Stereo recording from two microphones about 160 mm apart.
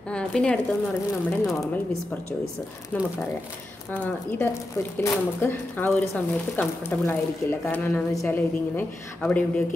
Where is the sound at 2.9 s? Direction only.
10° left (ahead or behind).